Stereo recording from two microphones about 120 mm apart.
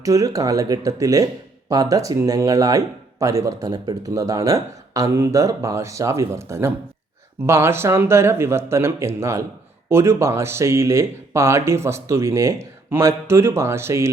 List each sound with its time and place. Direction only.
0.0 s speech: 30° right (ahead or behind)